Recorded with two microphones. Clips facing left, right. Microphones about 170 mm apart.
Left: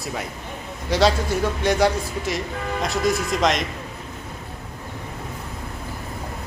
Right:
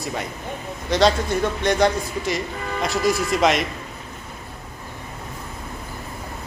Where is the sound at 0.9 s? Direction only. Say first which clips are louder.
Right 1 dB; 5° left (ahead or behind).